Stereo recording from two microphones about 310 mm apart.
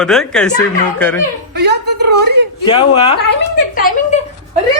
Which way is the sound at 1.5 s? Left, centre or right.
Right.